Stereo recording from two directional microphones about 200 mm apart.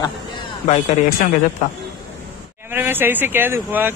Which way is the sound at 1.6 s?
40° left (ahead or behind).